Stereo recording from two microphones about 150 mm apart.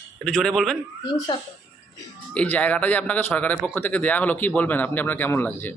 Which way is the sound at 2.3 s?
10° left (ahead or behind).